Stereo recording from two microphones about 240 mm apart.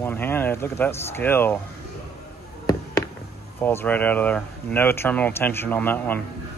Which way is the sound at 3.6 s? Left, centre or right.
Centre.